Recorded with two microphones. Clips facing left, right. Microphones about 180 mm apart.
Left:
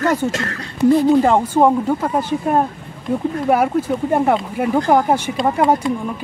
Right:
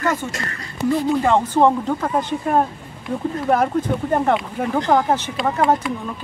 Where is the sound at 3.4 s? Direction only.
10° left (ahead or behind).